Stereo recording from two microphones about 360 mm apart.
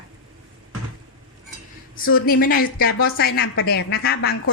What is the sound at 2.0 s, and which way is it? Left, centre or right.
A woman's voice, left.